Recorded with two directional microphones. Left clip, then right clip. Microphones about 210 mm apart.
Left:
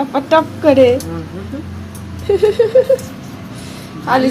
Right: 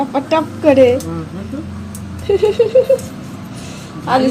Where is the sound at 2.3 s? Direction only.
Centre (ahead or behind).